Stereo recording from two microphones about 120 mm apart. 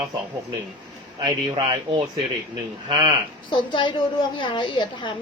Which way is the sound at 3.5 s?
45° left (ahead or behind).